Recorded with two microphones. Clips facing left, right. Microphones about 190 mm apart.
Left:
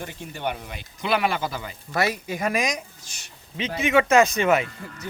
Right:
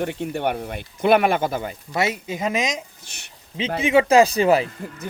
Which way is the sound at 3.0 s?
60° right (ahead or behind).